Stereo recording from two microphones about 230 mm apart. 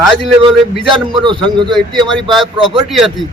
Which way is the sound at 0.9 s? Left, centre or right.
Right.